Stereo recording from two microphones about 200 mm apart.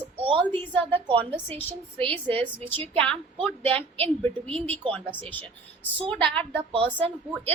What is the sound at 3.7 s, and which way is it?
Speech, 30° right (ahead or behind).